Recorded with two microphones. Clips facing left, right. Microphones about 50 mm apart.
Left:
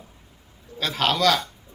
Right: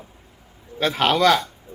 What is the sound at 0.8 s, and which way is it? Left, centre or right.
Speech, right.